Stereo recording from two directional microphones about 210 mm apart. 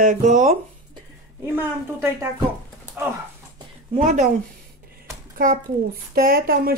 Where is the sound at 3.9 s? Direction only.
35° right (ahead or behind).